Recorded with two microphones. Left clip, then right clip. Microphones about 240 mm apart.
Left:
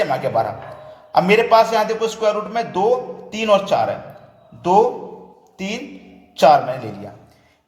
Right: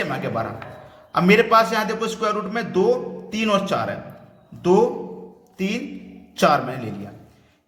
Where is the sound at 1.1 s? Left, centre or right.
Centre.